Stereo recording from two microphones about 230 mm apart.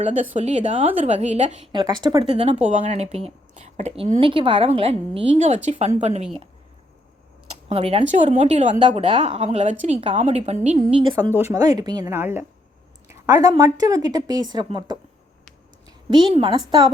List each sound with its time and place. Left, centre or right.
0.0 s a woman's voice: right
1.7 s speech: centre
7.7 s speech: right
11.1 s a woman's voice: centre